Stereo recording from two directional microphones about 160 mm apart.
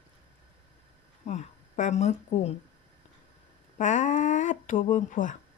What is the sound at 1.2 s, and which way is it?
Speech, 45° left (ahead or behind).